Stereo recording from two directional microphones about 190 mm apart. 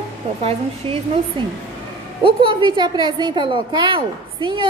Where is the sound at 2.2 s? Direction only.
25° right (ahead or behind).